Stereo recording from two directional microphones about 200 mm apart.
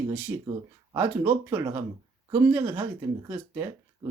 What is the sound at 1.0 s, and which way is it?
Speech, 10° right (ahead or behind).